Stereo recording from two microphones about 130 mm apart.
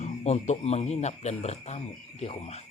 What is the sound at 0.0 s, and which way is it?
Speech, 60° left (ahead or behind).